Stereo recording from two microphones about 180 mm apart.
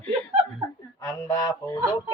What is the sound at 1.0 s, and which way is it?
Speech, 20° left (ahead or behind).